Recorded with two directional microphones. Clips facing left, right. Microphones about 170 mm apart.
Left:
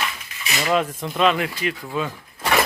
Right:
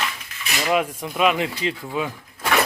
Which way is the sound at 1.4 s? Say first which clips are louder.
Right 1 dB; 25° right (ahead or behind).